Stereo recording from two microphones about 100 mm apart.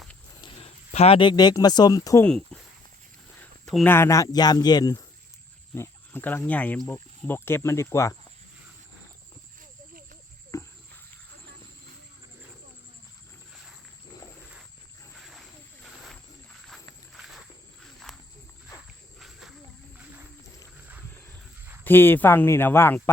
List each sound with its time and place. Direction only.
0.6 s a sound: 85° left
1.2 s speech: 45° left (ahead or behind)
2.2 s speech: 10° left (ahead or behind)
3.8 s speech: 25° left (ahead or behind); by 5.0 s 40° left (ahead or behind)
5.7 s speech: 20° left (ahead or behind)
10.5 s a sound: 30° left (ahead or behind)
15.1 s a sound: centre (ahead or behind)
17.2 s walk: 5° right (ahead or behind)
19.2 s snake: centre (ahead or behind)
21.8 s speech: 20° left (ahead or behind)